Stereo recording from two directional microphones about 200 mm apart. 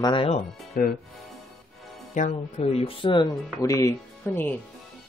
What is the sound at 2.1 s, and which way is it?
Speech, 35° left (ahead or behind).